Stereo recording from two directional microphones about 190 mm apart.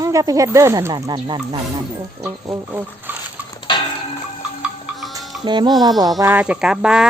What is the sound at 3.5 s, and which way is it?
Dishes, 25° left (ahead or behind).